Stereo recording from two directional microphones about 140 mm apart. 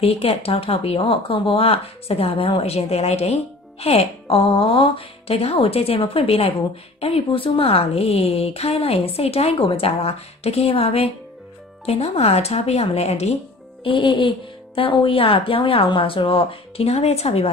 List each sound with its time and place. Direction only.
0.0 s a woman's voice: 45° left (ahead or behind)
13.8 s speech: 35° left (ahead or behind)